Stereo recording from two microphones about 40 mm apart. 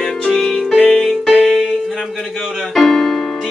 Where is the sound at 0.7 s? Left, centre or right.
Left.